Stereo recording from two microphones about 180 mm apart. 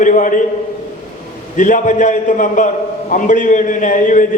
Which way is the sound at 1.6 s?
45° left (ahead or behind).